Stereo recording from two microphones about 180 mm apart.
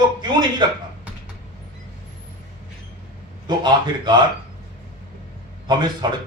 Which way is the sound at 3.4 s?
25° right (ahead or behind).